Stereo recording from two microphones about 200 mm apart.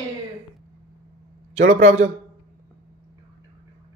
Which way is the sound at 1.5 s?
35° right (ahead or behind).